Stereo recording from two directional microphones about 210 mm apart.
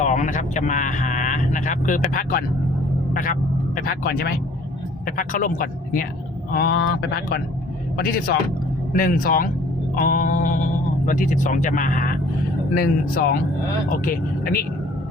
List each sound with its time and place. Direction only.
0.0 s speech: 35° left (ahead or behind)
8.9 s speech: 40° left (ahead or behind)